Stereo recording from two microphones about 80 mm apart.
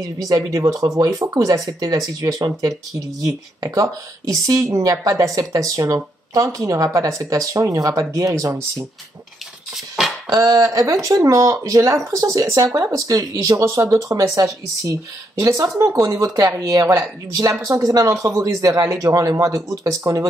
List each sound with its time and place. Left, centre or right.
0.2 s speech: right
10.3 s speech: right